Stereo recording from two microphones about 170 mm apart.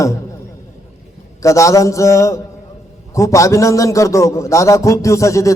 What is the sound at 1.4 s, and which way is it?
A man's voice, 20° left (ahead or behind).